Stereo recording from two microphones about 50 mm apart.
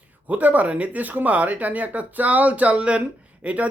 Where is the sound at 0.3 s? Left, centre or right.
Right.